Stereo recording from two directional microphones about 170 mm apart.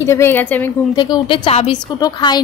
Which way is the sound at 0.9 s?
25° left (ahead or behind).